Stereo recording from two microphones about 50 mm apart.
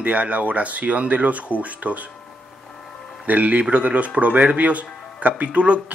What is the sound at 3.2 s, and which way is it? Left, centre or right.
Speech, right.